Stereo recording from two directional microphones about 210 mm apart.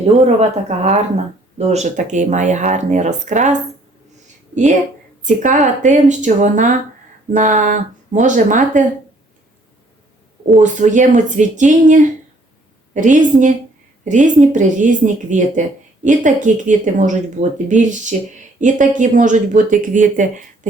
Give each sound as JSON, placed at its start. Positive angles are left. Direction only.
{"t": 0.0, "sound": "speech", "side_deg": -30}
{"t": 1.5, "sound": "speech", "side_deg": -30}
{"t": 10.6, "sound": "speech", "side_deg": -35}